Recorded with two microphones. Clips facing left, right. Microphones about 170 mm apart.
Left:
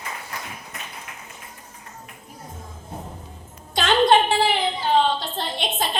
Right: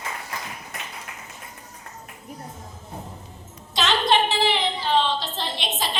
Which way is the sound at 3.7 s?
50° left (ahead or behind).